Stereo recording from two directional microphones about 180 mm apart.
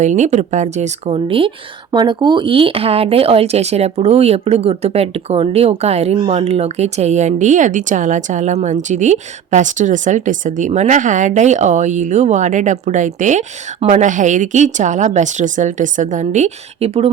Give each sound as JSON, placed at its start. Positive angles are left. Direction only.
{"t": 0.0, "sound": "speech", "side_deg": -40}